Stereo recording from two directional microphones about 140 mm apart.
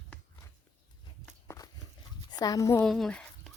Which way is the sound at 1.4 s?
25° left (ahead or behind).